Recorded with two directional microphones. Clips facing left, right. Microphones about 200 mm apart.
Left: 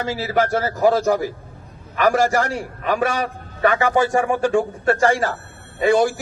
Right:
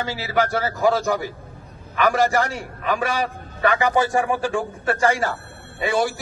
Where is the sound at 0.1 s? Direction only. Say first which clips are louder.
Left 3 dB; 45° left (ahead or behind).